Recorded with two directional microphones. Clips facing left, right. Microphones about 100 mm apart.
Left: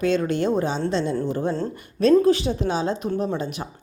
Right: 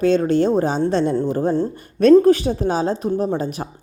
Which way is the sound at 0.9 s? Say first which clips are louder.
Right 5 dB; 50° right (ahead or behind).